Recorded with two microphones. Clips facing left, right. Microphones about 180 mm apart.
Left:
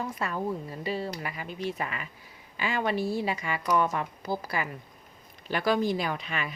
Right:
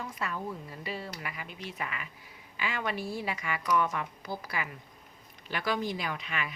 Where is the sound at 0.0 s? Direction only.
40° left (ahead or behind).